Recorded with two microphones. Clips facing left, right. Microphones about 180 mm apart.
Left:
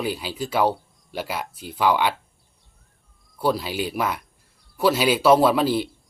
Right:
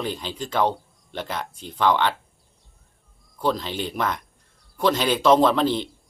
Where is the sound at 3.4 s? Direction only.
10° left (ahead or behind).